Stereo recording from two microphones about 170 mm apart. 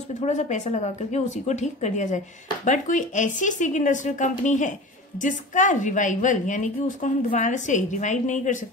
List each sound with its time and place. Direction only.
0.2 s speech: 45° left (ahead or behind)